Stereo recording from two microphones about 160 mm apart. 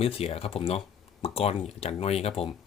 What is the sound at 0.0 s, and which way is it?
Speech, 40° left (ahead or behind).